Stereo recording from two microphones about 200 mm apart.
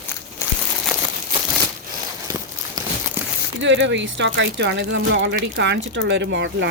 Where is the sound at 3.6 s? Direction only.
65° right (ahead or behind).